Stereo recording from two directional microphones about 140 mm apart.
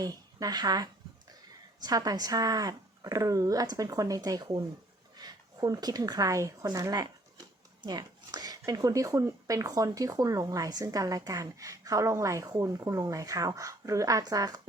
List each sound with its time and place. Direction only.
0.0 s speech: 25° right (ahead or behind)